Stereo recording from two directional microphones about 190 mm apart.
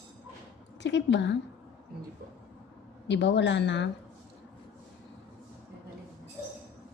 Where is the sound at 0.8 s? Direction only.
70° left (ahead or behind).